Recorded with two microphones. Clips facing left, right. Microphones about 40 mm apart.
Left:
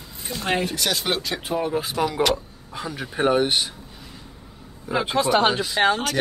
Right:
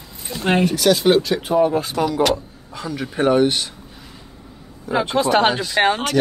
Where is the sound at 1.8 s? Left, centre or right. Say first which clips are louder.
Right 4 dB; centre.